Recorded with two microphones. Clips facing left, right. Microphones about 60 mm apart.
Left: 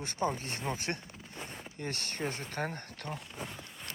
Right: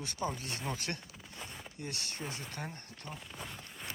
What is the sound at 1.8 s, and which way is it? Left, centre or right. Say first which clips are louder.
Speech: left 5 dB; left.